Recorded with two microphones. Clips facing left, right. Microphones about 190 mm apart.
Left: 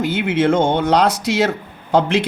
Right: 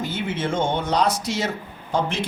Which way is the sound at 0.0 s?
80° left.